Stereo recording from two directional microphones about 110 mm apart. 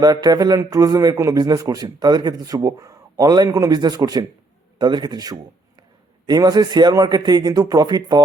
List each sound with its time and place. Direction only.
0.0 s a man's voice: 35° right (ahead or behind)